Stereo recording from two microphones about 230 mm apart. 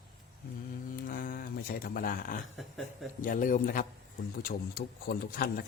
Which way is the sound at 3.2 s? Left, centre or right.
Left.